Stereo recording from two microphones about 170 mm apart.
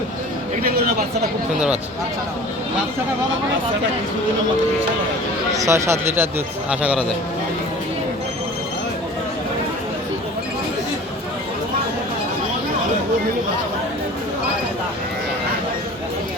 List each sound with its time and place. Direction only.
5.5 s speech: 15° right (ahead or behind)